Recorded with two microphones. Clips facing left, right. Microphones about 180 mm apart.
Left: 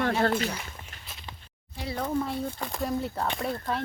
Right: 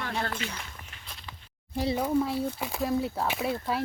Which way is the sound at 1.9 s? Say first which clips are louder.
Right 1 dB; 10° right (ahead or behind).